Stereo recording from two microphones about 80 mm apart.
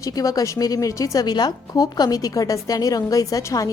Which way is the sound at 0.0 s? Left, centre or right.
Left.